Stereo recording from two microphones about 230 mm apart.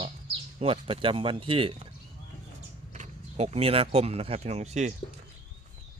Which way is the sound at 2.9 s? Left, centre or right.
Right.